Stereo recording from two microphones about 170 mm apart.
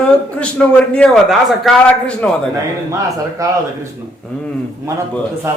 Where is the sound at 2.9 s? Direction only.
20° right (ahead or behind).